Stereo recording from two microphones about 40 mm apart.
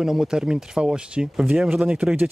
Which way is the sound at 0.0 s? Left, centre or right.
Centre.